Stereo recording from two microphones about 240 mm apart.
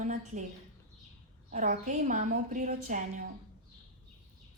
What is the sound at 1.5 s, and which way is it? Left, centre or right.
A woman's voice, right.